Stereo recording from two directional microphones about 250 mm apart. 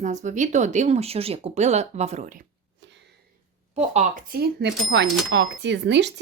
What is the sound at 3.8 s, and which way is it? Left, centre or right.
Speech, right.